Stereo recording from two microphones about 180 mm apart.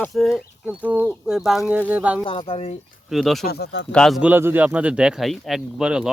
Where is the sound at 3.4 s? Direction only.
65° left (ahead or behind).